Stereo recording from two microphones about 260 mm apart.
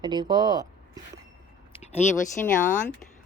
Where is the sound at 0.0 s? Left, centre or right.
Centre.